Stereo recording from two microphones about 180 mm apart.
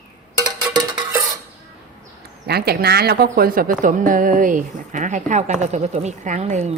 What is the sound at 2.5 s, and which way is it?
Speech, 60° right (ahead or behind).